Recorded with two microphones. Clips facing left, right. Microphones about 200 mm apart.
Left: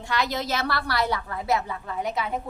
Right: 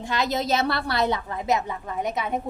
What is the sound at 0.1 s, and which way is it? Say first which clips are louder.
A woman's voice: right 3 dB; 20° right (ahead or behind).